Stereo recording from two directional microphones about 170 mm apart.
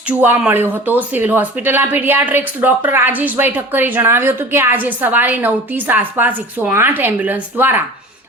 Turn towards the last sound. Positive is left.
turn(degrees=-10)  # may be behind; listen again after turning